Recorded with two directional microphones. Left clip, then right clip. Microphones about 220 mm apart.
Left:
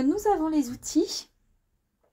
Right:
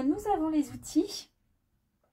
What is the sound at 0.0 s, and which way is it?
Speech, 45° left (ahead or behind).